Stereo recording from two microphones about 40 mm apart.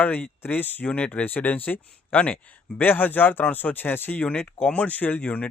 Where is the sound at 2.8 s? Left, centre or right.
Left.